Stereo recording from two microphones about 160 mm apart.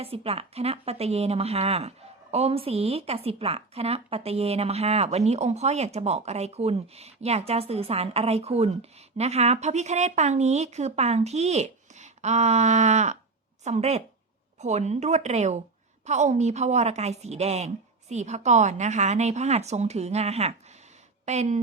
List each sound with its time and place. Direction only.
0.0 s a woman's voice: 35° right (ahead or behind)